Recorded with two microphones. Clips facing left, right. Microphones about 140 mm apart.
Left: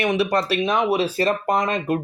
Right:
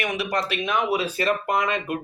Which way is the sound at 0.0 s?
30° left (ahead or behind).